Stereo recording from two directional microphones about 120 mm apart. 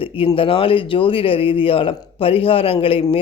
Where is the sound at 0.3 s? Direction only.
50° left (ahead or behind).